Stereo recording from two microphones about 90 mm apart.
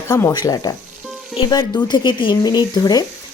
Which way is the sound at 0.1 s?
35° left (ahead or behind).